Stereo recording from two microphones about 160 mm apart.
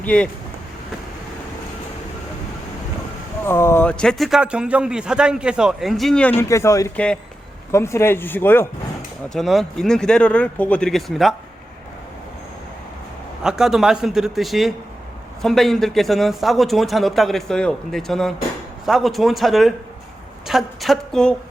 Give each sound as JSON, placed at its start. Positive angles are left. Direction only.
{"t": 0.0, "sound": "speech", "side_deg": 10}
{"t": 3.4, "sound": "speech", "side_deg": 15}
{"t": 6.5, "sound": "speech", "side_deg": 20}
{"t": 6.9, "sound": "speech", "side_deg": 5}
{"t": 9.3, "sound": "speech", "side_deg": 0}
{"t": 13.4, "sound": "speech", "side_deg": -5}